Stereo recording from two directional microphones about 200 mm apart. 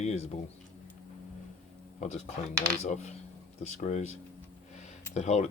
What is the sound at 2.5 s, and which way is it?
Speech, 5° left (ahead or behind).